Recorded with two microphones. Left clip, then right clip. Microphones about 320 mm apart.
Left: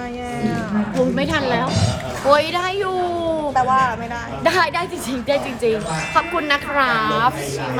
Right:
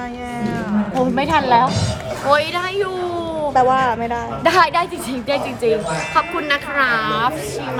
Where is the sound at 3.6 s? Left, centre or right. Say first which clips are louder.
Right 2 dB; right.